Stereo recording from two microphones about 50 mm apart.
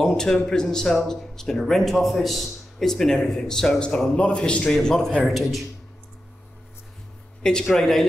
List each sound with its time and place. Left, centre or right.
0.0 s a man's voice: centre
3.8 s a man's voice: centre
4.8 s a man's voice: centre
7.6 s a man's voice: centre